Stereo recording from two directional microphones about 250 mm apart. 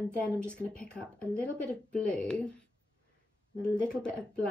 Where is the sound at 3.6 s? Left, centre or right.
Centre.